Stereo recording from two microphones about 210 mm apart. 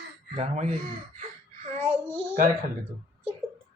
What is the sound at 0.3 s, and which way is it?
Speech, 35° right (ahead or behind).